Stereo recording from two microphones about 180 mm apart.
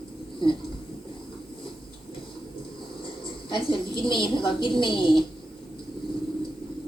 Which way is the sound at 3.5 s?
25° left (ahead or behind).